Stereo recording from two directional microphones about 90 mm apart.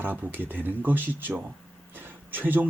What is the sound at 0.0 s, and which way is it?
A man's voice, 20° right (ahead or behind).